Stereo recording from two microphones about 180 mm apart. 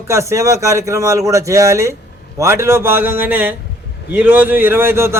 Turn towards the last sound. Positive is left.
turn(degrees=-15)  # may be behind; listen again after turning